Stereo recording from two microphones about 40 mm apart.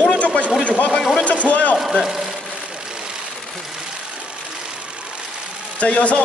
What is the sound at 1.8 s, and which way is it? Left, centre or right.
Speech, centre.